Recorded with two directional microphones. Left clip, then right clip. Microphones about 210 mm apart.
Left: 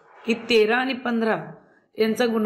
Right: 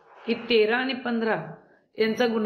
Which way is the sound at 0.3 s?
25° left (ahead or behind).